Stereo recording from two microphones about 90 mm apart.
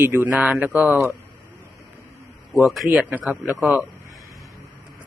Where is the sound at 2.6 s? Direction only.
Centre (ahead or behind).